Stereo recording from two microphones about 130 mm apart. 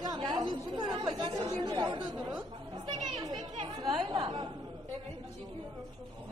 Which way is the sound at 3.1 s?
30° right (ahead or behind).